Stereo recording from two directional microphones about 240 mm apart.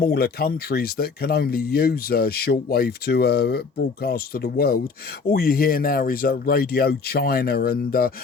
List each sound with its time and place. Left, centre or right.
0.0 s speech: left